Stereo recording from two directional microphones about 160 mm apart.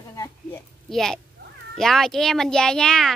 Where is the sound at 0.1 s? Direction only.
20° left (ahead or behind).